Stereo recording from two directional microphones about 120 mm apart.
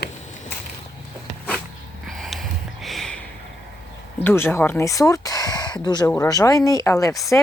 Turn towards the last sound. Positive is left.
turn(degrees=25)  # may be behind; listen again after turning